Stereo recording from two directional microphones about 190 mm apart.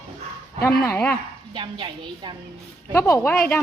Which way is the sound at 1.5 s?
25° right (ahead or behind).